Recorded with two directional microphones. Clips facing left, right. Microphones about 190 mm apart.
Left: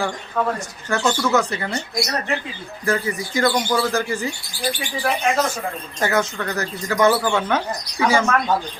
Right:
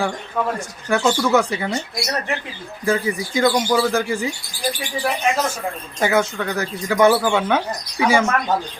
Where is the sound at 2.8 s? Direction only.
10° right (ahead or behind).